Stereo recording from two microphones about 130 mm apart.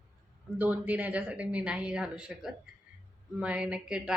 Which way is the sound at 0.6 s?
10° right (ahead or behind).